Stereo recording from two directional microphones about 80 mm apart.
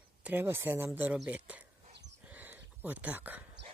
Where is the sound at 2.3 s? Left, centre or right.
Right.